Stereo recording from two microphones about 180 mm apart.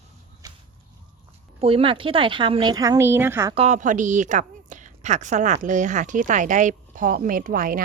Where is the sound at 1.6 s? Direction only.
30° right (ahead or behind); by 3.6 s 15° right (ahead or behind).